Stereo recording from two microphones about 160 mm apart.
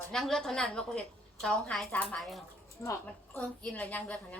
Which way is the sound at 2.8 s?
15° left (ahead or behind).